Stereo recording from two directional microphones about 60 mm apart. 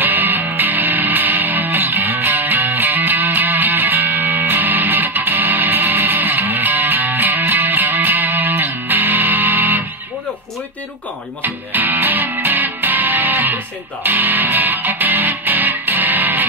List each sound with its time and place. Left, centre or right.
0.0 s music: right
11.4 s music: right